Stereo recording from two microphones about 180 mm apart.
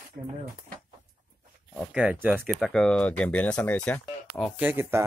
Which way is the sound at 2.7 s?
5° left (ahead or behind).